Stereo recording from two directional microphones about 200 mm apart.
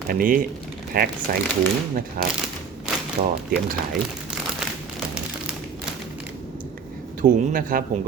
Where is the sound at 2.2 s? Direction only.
45° right (ahead or behind).